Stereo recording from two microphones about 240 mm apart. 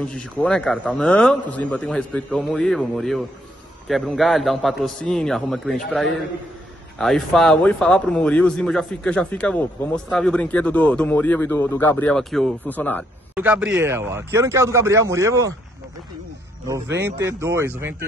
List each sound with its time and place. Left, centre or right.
0.0 s speech: centre
13.3 s speech: centre
16.6 s speech: centre